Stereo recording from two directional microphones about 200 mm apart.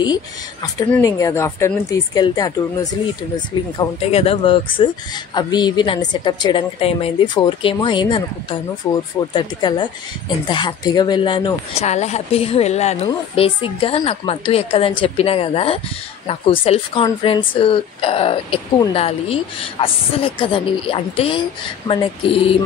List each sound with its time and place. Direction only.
0.7 s speech: 15° left (ahead or behind)
3.7 s speech: 30° left (ahead or behind)
8.8 s speech: 10° left (ahead or behind)
9.3 s speech: 20° left (ahead or behind)